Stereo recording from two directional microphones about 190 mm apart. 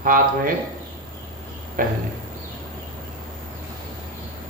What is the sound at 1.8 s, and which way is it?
Speech, 45° right (ahead or behind).